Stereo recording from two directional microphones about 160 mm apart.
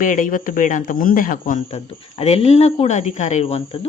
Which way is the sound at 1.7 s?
40° left (ahead or behind).